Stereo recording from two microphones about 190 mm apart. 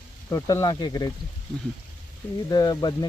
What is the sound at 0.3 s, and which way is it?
Speech, 20° left (ahead or behind).